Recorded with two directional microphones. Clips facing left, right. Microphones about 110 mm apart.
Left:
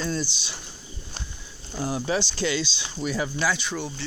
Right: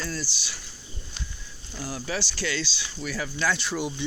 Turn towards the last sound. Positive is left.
turn(degrees=0)  # may be behind; listen again after turning